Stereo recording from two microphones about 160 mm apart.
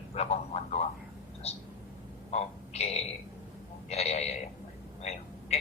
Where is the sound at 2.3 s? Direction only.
40° left (ahead or behind).